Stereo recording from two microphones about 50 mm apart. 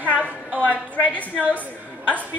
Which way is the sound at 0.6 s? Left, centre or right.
Left.